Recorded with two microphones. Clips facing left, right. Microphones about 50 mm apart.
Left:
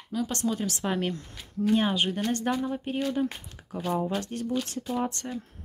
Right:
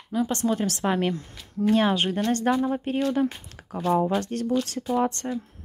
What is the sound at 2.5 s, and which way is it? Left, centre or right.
Speech, right.